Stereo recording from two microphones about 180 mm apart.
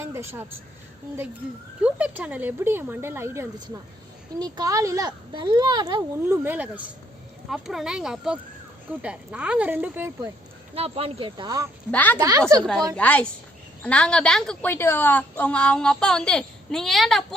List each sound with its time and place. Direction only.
0.0 s speech: 15° right (ahead or behind)
1.8 s a woman's voice: 5° right (ahead or behind)
10.8 s speech: 35° right (ahead or behind)
11.9 s a woman's voice: 10° left (ahead or behind)
12.1 s speech: 20° right (ahead or behind)
13.0 s a woman's voice: 10° left (ahead or behind)